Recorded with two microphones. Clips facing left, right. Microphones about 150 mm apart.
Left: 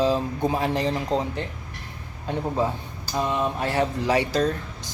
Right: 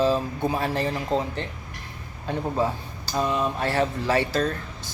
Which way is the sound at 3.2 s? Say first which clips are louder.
Even; 15° left (ahead or behind).